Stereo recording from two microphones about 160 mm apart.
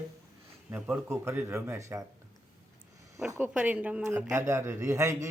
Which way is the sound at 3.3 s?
10° right (ahead or behind).